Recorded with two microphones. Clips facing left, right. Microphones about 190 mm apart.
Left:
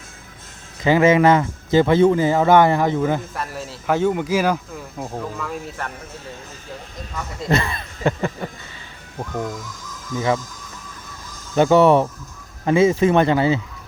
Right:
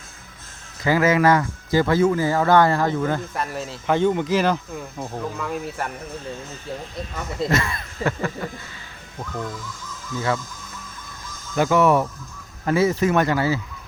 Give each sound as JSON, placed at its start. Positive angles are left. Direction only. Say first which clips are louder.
{"t": 0.8, "sound": "speech", "louder": "left 4 dB", "side_deg": 20}
{"t": 3.3, "sound": "speech", "louder": "right 1 dB", "side_deg": 0}
{"t": 5.4, "sound": "speech", "louder": "right 1 dB", "side_deg": 0}
{"t": 7.5, "sound": "a sound", "louder": "left 2 dB", "side_deg": 30}
{"t": 9.3, "sound": "speech", "louder": "left 3 dB", "side_deg": 10}
{"t": 11.5, "sound": "speech", "louder": "left 4 dB", "side_deg": 30}